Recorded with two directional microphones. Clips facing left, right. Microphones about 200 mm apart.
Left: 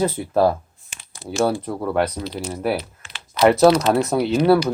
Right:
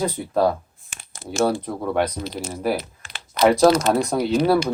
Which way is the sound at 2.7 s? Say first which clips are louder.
Left 1 dB; 50° right (ahead or behind).